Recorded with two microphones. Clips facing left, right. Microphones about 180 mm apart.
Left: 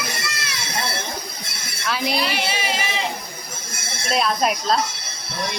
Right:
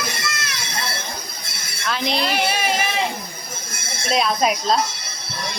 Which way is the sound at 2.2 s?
45° right (ahead or behind).